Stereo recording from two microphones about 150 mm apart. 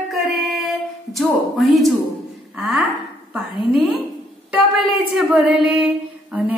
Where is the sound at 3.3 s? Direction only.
Centre (ahead or behind).